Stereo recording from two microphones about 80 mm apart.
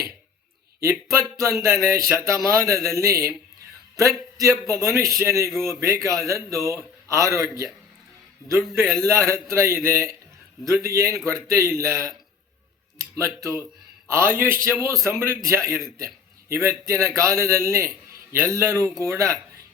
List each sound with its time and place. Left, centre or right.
0.8 s a man's voice: right
8.8 s a man's voice: centre
9.0 s a man's voice: right